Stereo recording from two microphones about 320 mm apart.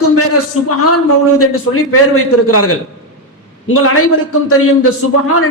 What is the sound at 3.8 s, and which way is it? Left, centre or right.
Speech, left.